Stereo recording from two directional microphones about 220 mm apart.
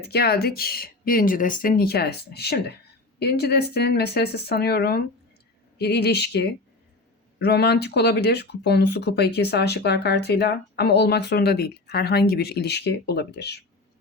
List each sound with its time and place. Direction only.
0.1 s speech: 45° left (ahead or behind)